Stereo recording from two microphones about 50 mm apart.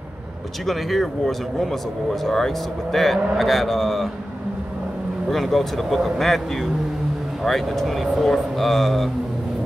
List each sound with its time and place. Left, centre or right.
0.7 s speech: centre
5.3 s speech: centre